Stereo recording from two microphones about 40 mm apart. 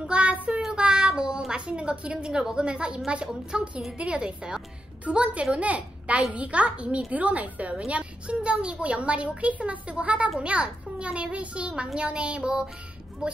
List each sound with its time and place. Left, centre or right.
0.0 s child singing: right
1.5 s a child's voice: right